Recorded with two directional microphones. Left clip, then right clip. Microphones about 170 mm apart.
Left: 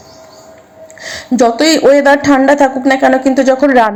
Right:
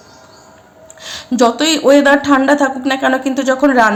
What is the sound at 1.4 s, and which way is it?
A woman's voice, 20° left (ahead or behind).